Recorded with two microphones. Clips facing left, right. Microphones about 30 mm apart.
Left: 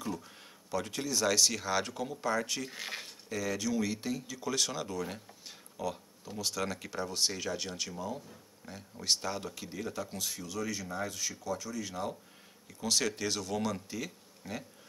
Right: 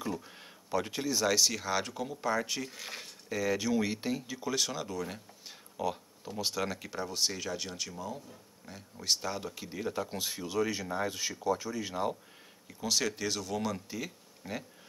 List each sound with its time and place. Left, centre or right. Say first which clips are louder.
0.0 s speech: right 2 dB; centre
2.7 s speech: left 2 dB; centre
3.3 s speech: right 3 dB; centre
12.6 s speech: even; centre